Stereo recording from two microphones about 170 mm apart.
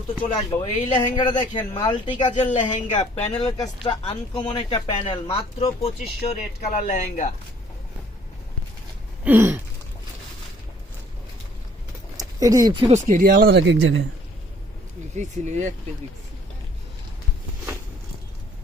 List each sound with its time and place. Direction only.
0.2 s speech: 25° left (ahead or behind)
2.3 s speech: 45° left (ahead or behind)
3.9 s speech: 25° left (ahead or behind)
6.2 s speech: 50° left (ahead or behind)
9.2 s a sound: 10° right (ahead or behind)
12.1 s a sound: 20° right (ahead or behind)
12.9 s speech: 45° right (ahead or behind); by 13.7 s 80° right
15.1 s speech: 45° right (ahead or behind)